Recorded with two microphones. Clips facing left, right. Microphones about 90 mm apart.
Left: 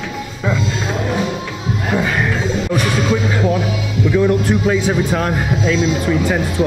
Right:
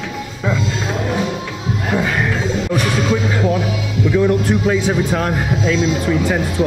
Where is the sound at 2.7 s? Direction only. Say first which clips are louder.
Even; 15° left (ahead or behind).